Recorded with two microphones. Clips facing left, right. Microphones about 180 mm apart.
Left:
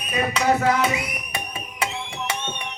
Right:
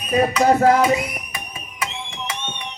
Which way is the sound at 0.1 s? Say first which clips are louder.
Right 5 dB; 40° right (ahead or behind).